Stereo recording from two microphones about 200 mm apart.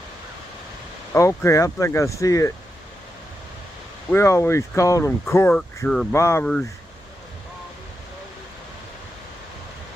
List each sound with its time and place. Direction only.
1.1 s speech: 15° left (ahead or behind)
4.1 s speech: 15° left (ahead or behind)